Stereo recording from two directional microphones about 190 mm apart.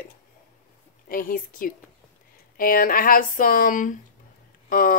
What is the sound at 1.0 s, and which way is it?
A woman's voice, 45° left (ahead or behind).